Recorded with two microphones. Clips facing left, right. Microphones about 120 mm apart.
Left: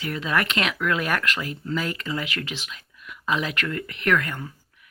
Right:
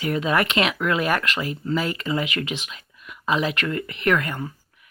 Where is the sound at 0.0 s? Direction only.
15° right (ahead or behind).